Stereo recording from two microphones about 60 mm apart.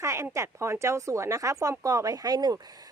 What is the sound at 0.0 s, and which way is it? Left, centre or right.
Speech, right.